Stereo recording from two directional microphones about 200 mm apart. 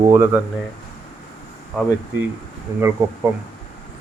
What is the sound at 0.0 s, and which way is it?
Speech, 15° right (ahead or behind).